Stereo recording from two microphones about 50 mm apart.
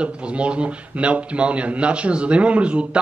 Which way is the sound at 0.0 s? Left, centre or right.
Right.